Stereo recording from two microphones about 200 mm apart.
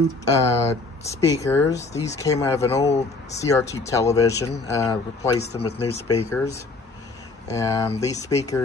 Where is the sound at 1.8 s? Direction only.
35° left (ahead or behind).